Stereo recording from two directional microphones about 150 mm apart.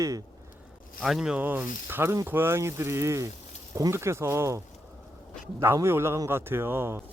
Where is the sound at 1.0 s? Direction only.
5° right (ahead or behind).